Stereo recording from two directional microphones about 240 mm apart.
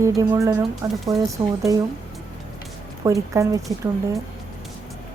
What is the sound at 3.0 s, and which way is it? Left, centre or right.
Speech, centre.